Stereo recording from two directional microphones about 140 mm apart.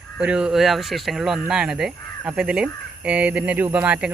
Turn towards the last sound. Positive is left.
turn(degrees=-10)  # may be behind; listen again after turning